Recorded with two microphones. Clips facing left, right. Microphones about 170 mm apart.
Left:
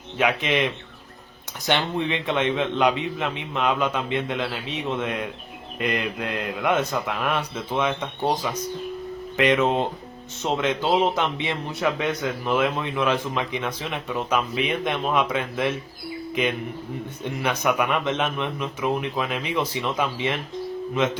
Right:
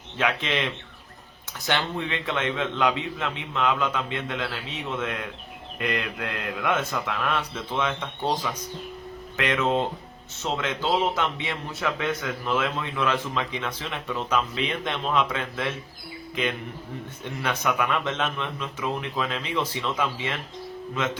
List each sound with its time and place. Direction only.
0.2 s a man's voice: 15° left (ahead or behind)
9.4 s speech: 20° left (ahead or behind)